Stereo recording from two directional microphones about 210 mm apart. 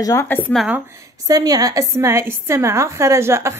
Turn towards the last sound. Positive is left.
turn(degrees=-10)  # may be behind; listen again after turning